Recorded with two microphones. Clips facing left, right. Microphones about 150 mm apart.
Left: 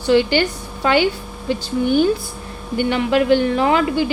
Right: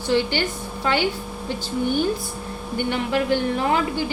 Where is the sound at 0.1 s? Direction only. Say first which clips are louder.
Left 6 dB; 90° left.